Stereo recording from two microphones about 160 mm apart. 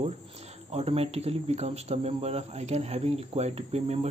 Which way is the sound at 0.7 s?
40° right (ahead or behind).